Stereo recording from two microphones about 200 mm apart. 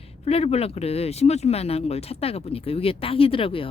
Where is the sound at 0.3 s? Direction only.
30° left (ahead or behind).